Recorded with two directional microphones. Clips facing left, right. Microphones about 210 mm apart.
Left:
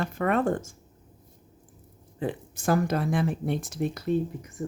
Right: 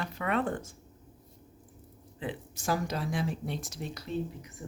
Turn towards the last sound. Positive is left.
turn(degrees=55)  # may be behind; listen again after turning